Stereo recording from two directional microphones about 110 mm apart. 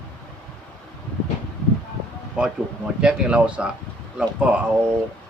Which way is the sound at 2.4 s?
10° right (ahead or behind).